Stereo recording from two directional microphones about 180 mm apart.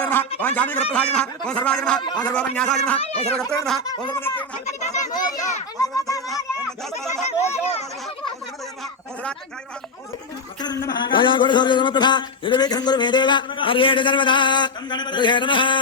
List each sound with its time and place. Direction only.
0.0 s a sound: 10° left (ahead or behind)
0.3 s a man's voice: 10° left (ahead or behind)
3.0 s speech: 35° left (ahead or behind)
3.8 s a man's voice: 20° left (ahead or behind)
4.5 s speech: 40° left (ahead or behind)
5.1 s a man's voice: 25° left (ahead or behind)
6.3 s speech: centre (ahead or behind)
7.6 s a sound: 35° left (ahead or behind)
10.6 s a man's voice: 20° left (ahead or behind)